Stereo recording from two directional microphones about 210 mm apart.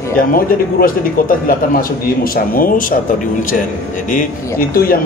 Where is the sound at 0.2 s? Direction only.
45° left (ahead or behind).